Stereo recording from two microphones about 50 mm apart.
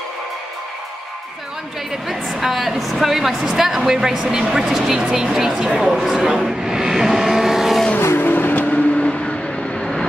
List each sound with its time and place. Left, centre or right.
1.9 s a woman's voice: centre
8.2 s vehicle: left
8.9 s vehicle: left